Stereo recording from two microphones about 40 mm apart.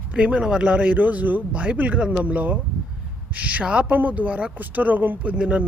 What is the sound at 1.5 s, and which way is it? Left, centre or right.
Speech, right.